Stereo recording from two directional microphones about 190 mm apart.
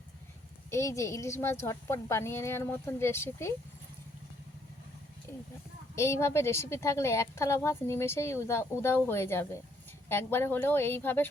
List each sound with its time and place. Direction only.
0.7 s a woman's voice: 15° left (ahead or behind)
6.0 s a woman's voice: 15° left (ahead or behind)